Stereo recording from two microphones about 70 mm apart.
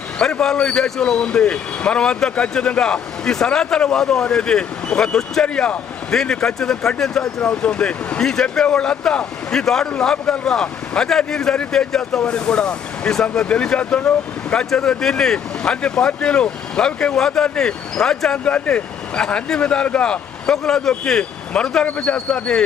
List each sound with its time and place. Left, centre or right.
0.2 s speech: centre